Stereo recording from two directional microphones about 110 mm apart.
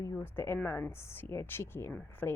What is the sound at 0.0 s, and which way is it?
A woman's voice, 25° left (ahead or behind).